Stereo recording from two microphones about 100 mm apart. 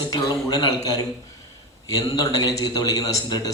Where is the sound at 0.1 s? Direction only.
35° left (ahead or behind).